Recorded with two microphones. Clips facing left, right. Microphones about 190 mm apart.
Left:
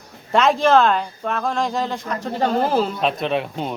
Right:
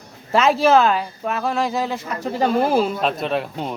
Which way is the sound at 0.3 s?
5° right (ahead or behind).